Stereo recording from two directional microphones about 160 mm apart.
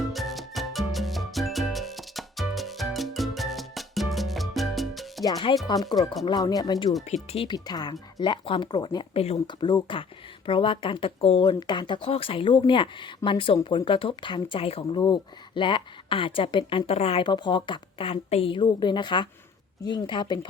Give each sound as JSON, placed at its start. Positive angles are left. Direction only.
{"t": 0.0, "sound": "music", "side_deg": 0}
{"t": 5.2, "sound": "speech", "side_deg": 35}
{"t": 7.0, "sound": "speech", "side_deg": 45}
{"t": 7.4, "sound": "speech", "side_deg": 25}